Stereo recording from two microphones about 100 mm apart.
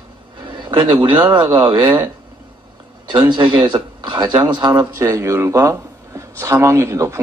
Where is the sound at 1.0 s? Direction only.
55° right (ahead or behind).